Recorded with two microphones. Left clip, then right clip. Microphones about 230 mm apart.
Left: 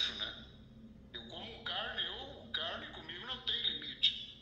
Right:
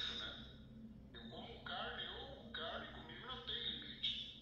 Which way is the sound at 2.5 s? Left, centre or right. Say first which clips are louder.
Left 8 dB; left.